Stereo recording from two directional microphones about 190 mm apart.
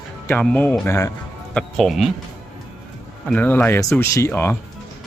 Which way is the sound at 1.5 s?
Centre (ahead or behind).